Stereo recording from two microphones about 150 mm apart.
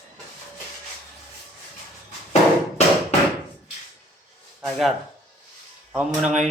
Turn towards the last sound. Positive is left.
turn(degrees=-10)  # may be behind; listen again after turning